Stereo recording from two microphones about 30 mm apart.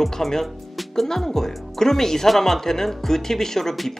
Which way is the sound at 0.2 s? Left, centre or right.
Centre.